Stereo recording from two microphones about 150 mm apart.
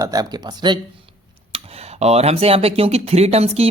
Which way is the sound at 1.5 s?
45° right (ahead or behind).